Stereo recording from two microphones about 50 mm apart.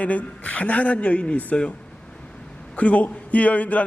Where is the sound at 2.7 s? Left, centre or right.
Left.